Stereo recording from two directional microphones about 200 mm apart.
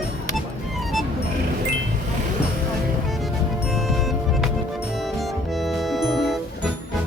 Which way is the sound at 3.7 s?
Centre (ahead or behind).